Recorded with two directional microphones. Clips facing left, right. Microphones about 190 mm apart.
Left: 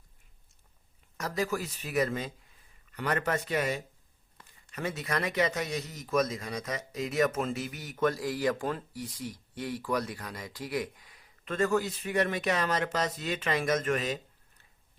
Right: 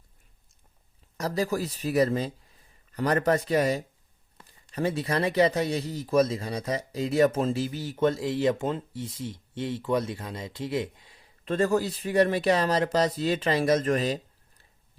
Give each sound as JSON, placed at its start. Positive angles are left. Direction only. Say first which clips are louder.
{"t": 1.1, "sound": "speech", "louder": "right 4 dB", "side_deg": -35}